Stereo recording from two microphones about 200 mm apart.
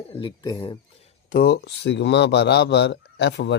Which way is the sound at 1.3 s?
45° left (ahead or behind).